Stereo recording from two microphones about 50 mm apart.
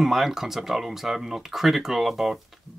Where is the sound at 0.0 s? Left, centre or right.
Centre.